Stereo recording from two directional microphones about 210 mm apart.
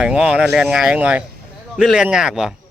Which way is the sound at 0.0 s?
5° right (ahead or behind).